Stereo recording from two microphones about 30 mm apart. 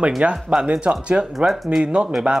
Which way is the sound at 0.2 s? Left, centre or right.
Right.